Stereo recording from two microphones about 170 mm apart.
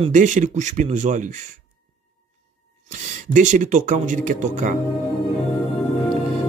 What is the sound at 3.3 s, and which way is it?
Speech, 50° right (ahead or behind).